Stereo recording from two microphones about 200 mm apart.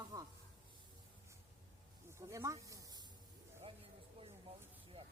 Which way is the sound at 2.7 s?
15° right (ahead or behind).